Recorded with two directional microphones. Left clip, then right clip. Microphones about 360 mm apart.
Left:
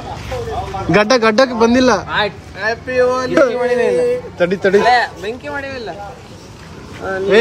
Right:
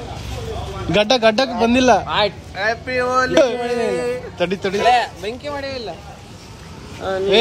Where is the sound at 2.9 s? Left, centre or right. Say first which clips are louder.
Left 4 dB; right.